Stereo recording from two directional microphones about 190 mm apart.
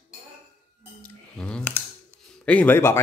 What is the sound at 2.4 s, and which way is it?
Speech, 10° left (ahead or behind).